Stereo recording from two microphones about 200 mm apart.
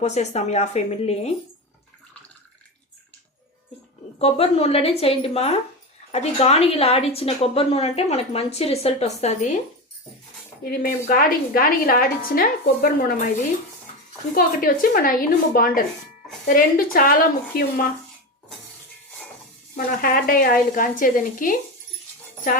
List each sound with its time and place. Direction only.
0.0 s speech: 35° left (ahead or behind)
4.2 s a woman's voice: 30° left (ahead or behind)
10.6 s a woman's voice: 45° left (ahead or behind)
14.3 s a woman's voice: 45° left (ahead or behind)
19.7 s a woman's voice: 45° left (ahead or behind)